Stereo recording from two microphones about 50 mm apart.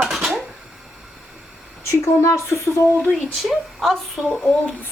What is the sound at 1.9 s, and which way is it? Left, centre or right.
Stir, left.